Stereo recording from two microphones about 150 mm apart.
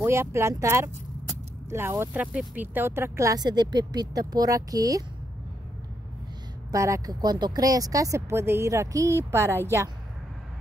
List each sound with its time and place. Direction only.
0.0 s speech: 15° right (ahead or behind)
6.7 s speech: 20° right (ahead or behind)